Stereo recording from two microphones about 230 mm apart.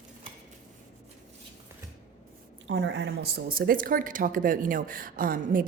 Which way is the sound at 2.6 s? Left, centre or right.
Right.